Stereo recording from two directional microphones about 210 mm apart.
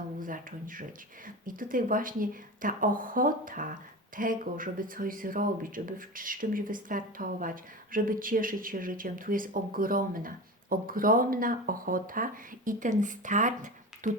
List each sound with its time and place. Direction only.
0.2 s speech: 40° right (ahead or behind)